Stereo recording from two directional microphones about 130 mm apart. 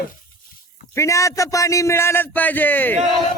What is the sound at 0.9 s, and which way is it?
A man's voice, 25° left (ahead or behind).